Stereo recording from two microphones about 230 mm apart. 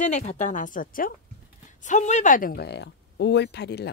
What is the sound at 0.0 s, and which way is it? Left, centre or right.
Speech, left.